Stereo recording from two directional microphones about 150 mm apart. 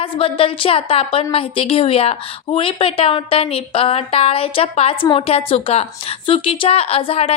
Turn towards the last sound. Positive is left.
turn(degrees=40)  # may be behind; listen again after turning